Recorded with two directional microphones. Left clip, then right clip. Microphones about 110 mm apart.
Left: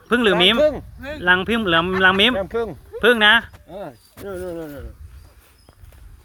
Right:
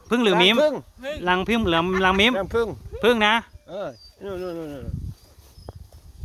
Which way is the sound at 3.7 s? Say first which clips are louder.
Right 3 dB; 25° right (ahead or behind).